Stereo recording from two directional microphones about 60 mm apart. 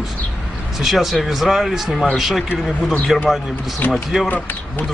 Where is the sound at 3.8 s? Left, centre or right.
Left.